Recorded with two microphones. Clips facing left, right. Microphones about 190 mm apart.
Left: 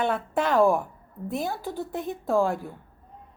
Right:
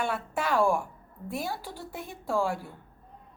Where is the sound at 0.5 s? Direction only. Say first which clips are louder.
Left 4 dB; 20° left (ahead or behind).